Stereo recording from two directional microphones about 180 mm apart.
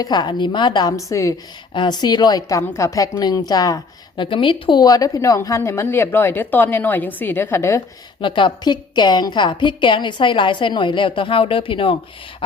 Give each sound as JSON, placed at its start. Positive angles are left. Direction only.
{"t": 0.0, "sound": "a woman's voice", "side_deg": 25}
{"t": 8.2, "sound": "a woman's voice", "side_deg": 25}